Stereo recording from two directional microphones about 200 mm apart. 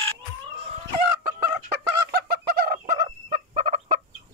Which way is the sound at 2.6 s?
45° right (ahead or behind).